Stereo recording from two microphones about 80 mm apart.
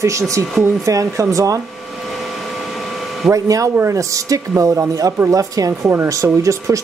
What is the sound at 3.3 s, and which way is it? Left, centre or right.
Speech, right.